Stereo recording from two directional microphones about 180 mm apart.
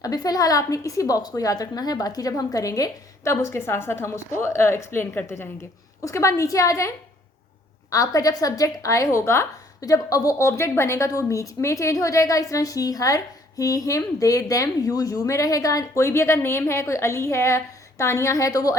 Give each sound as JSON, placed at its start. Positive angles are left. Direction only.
{"t": 0.0, "sound": "a woman's voice", "side_deg": 20}